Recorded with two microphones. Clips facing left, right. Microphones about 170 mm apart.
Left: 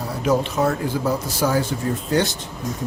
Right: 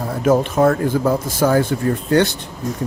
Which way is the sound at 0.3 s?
50° right (ahead or behind).